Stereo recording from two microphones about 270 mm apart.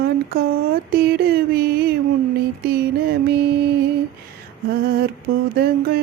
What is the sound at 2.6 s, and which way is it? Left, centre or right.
Mantra, right.